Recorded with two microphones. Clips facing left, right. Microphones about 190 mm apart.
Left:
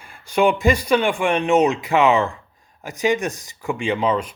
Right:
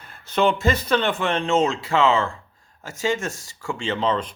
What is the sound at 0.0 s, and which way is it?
Speech, 10° left (ahead or behind).